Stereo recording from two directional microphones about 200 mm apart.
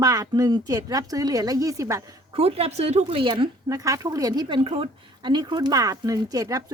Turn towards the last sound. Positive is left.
turn(degrees=-15)  # may be behind; listen again after turning